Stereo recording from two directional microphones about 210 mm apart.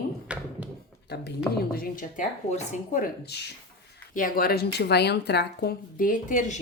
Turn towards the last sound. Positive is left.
turn(degrees=35)  # may be behind; listen again after turning